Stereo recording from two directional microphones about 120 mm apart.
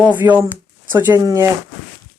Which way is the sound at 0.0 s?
15° right (ahead or behind).